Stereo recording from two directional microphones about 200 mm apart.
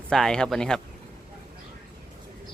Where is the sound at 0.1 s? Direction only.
5° left (ahead or behind).